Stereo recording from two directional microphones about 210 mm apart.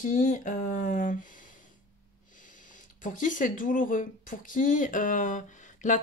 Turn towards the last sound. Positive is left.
turn(degrees=35)  # may be behind; listen again after turning